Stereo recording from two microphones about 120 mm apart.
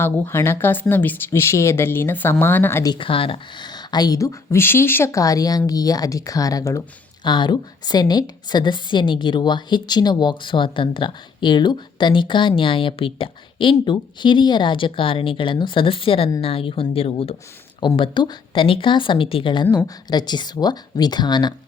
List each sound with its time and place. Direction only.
0.0 s a woman's voice: 20° left (ahead or behind)
2.8 s a woman's voice: 40° left (ahead or behind)
7.3 s a woman's voice: 40° left (ahead or behind)
17.7 s a woman's voice: 40° left (ahead or behind)